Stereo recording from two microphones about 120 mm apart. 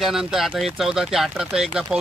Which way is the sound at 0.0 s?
5° right (ahead or behind).